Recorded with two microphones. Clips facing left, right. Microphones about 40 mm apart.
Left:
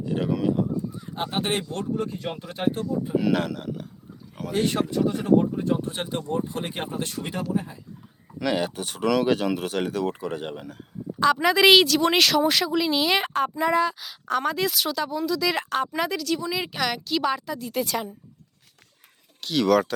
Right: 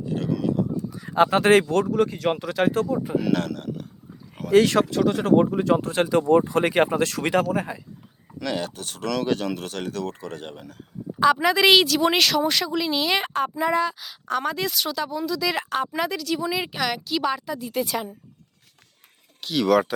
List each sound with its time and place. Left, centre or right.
0.1 s speech: centre
0.9 s speech: right
3.2 s speech: centre
4.5 s speech: right
8.4 s speech: centre
11.2 s a woman's voice: centre
19.4 s a woman's voice: centre